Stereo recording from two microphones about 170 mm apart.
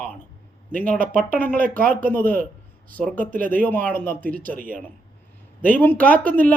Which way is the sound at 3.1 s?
55° right (ahead or behind).